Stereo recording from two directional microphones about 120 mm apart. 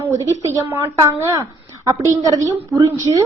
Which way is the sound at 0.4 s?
25° right (ahead or behind).